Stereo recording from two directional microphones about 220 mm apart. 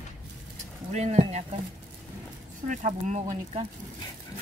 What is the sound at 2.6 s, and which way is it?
Speech, 35° right (ahead or behind).